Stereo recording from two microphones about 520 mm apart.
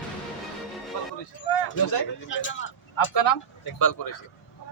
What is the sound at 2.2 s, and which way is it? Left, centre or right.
Speech, left.